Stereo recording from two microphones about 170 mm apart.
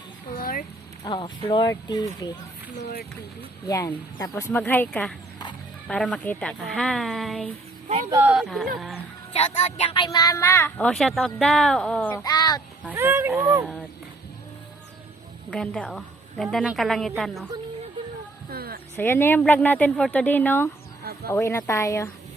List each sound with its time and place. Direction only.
0.3 s a sound: 55° left (ahead or behind)
1.0 s speech: 30° left (ahead or behind)
2.7 s speech: 65° left (ahead or behind)
3.7 s a child's voice: 20° left (ahead or behind); by 7.5 s centre (ahead or behind)
8.1 s speech: 10° right (ahead or behind)
8.4 s a child's voice: centre (ahead or behind)
9.3 s speech: 40° left (ahead or behind)
10.0 s a child's voice: 20° left (ahead or behind); by 12.1 s 5° left (ahead or behind)
12.1 s speech: 25° left (ahead or behind)
12.9 s speech: 10° right (ahead or behind)
15.4 s a child's voice: 5° left (ahead or behind)
18.4 s a sound: 65° right (ahead or behind)
18.9 s speech: 15° left (ahead or behind)